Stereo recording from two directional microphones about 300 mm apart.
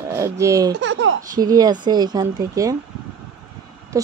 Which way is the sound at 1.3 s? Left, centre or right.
Centre.